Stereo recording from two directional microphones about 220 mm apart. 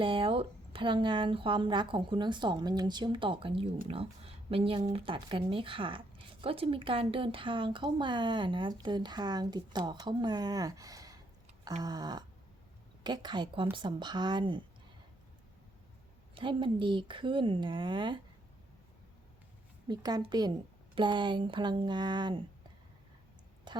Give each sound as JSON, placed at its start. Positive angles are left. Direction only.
{"t": 0.0, "sound": "speech", "side_deg": -25}
{"t": 16.3, "sound": "speech", "side_deg": -20}
{"t": 19.9, "sound": "speech", "side_deg": -20}
{"t": 23.7, "sound": "a sound", "side_deg": -20}